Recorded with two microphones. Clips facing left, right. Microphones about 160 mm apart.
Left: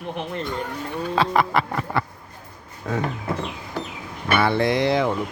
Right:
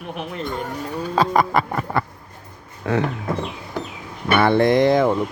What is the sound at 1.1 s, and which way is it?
Speech, 40° right (ahead or behind).